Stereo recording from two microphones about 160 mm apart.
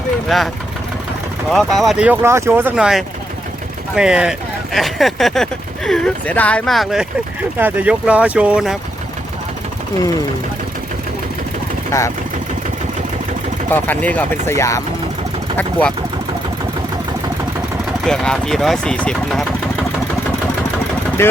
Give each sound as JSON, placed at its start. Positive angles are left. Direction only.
{"t": 0.3, "sound": "speech", "side_deg": 0}
{"t": 2.2, "sound": "speech", "side_deg": -15}
{"t": 11.9, "sound": "speech", "side_deg": 20}
{"t": 13.7, "sound": "speech", "side_deg": 10}
{"t": 18.0, "sound": "speech", "side_deg": 5}
{"t": 21.2, "sound": "speech", "side_deg": 15}